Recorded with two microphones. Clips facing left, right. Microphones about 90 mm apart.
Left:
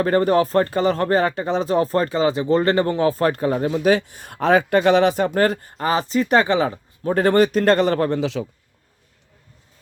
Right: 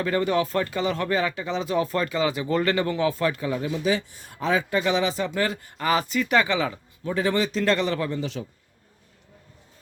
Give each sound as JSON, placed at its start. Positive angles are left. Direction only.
{"t": 0.0, "sound": "speech", "side_deg": 45}
{"t": 8.2, "sound": "a man's voice", "side_deg": 90}